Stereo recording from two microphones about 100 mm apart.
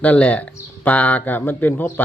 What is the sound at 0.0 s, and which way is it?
Speech, 15° left (ahead or behind).